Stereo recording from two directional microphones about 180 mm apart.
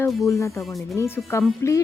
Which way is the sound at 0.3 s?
15° left (ahead or behind).